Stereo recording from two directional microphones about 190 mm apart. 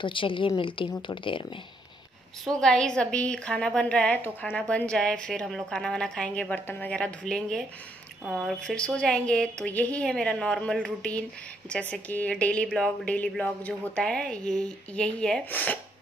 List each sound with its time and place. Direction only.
0.0 s a woman's voice: 25° left (ahead or behind)
2.4 s a woman's voice: 5° left (ahead or behind)